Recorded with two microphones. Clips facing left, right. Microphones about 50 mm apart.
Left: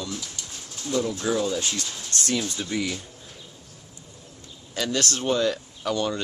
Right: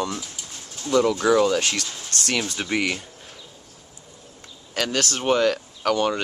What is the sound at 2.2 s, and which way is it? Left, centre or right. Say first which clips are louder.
Speech: right 2 dB; right.